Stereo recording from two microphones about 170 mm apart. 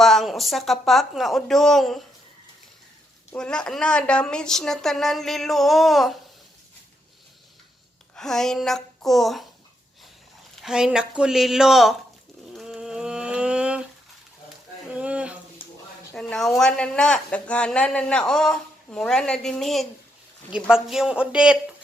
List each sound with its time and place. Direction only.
0.0 s a man's voice: centre (ahead or behind)
3.3 s a man's voice: 5° left (ahead or behind)
8.1 s a man's voice: 5° left (ahead or behind)
10.5 s a man's voice: centre (ahead or behind)
12.5 s a sound: 5° right (ahead or behind)
14.8 s a sound: 10° right (ahead or behind)
16.1 s a man's voice: 5° left (ahead or behind)